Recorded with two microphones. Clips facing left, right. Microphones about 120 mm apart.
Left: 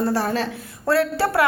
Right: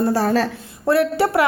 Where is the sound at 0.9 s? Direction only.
20° right (ahead or behind).